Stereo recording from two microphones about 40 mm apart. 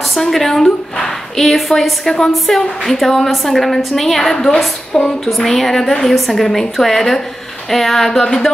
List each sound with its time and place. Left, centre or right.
0.1 s a woman's voice: centre
1.4 s a woman's voice: centre
8.2 s a woman's voice: centre